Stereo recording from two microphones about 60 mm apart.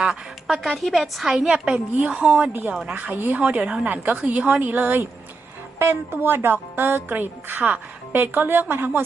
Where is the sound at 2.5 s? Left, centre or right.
Right.